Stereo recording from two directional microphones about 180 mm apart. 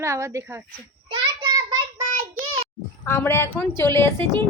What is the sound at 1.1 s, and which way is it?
Child singing, 25° right (ahead or behind).